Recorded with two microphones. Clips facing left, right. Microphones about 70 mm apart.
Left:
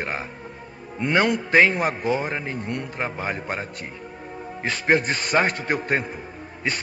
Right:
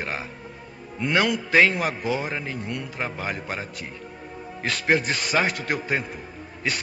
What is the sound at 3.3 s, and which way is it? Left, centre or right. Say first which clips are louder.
Speech: left 2 dB; left.